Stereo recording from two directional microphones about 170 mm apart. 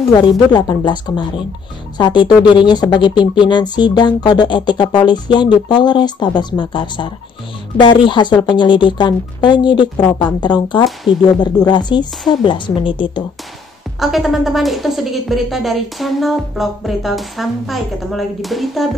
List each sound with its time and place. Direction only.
0.1 s speech: 25° left (ahead or behind)
13.9 s a woman's voice: centre (ahead or behind)